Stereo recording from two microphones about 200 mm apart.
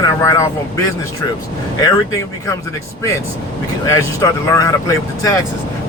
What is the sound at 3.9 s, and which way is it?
Speech, 15° left (ahead or behind).